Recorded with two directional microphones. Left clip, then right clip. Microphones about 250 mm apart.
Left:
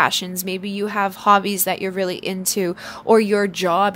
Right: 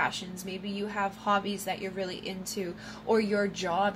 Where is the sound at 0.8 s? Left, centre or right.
Left.